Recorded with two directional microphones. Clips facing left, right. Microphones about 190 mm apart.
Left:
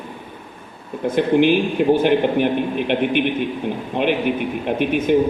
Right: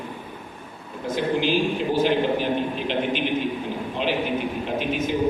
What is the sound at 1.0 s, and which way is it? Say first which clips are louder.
A man's voice: left 8 dB; 60° left (ahead or behind).